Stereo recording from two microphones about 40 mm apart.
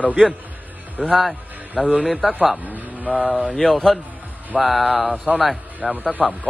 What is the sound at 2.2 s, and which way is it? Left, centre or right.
Speech, centre.